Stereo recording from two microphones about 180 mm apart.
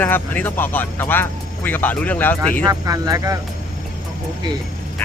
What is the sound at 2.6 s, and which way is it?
Speech, 20° right (ahead or behind).